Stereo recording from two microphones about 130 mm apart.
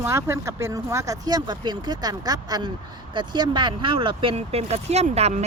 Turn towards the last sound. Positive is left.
turn(degrees=-55)  # may be behind; listen again after turning